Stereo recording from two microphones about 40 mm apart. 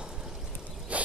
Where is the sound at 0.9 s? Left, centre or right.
Right.